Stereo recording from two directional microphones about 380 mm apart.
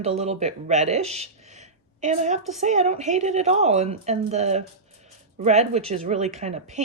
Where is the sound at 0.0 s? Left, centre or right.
Centre.